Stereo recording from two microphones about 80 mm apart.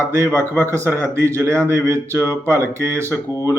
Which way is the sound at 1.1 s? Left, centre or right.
Right.